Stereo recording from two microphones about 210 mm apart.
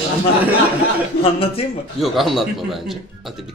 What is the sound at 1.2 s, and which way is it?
Speech, 25° left (ahead or behind).